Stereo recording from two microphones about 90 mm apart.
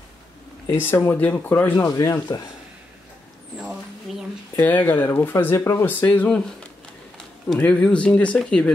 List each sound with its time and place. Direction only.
0.7 s speech: 25° left (ahead or behind)
1.9 s speech: 35° left (ahead or behind)
4.6 s speech: 20° left (ahead or behind)
7.5 s speech: 15° left (ahead or behind)